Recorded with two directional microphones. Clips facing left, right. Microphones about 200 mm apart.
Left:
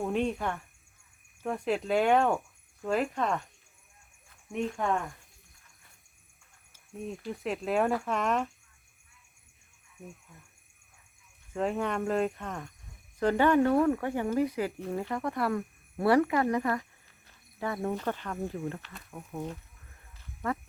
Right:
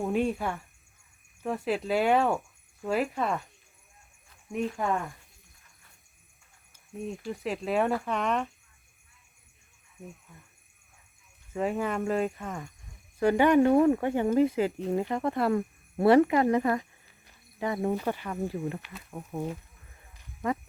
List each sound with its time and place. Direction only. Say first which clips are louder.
0.0 s speech: right 2 dB; 5° right (ahead or behind)
4.5 s speech: right 1 dB; 5° right (ahead or behind)
6.7 s speech: right 2 dB; centre (ahead or behind)
10.3 s speech: right 1 dB; centre (ahead or behind)
11.5 s speech: right 1 dB; 5° right (ahead or behind)
20.1 s sheep: right 3 dB; 15° right (ahead or behind)